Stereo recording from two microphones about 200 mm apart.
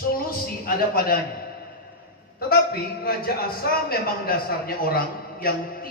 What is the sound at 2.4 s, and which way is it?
A man's voice, 50° left (ahead or behind).